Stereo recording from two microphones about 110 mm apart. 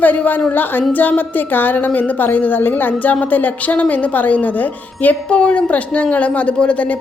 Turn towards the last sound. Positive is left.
turn(degrees=10)  # may be behind; listen again after turning